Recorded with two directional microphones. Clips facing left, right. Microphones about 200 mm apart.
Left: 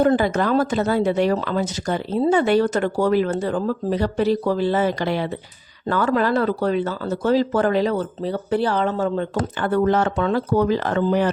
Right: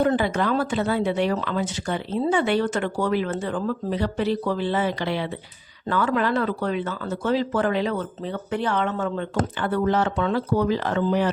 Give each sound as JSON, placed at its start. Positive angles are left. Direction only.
{"t": 0.0, "sound": "speech", "side_deg": 40}